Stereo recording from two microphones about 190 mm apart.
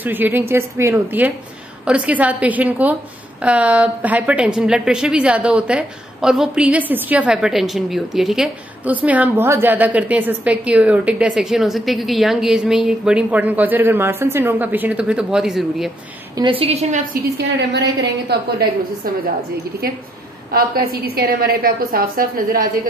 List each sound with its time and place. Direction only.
0.0 s a woman's voice: 10° right (ahead or behind)
16.3 s a woman's voice: 25° right (ahead or behind)
17.1 s a woman's voice: 65° right (ahead or behind)
19.8 s a woman's voice: 55° right (ahead or behind)